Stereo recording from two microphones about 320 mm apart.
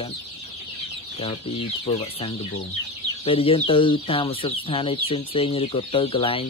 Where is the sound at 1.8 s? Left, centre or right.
Centre.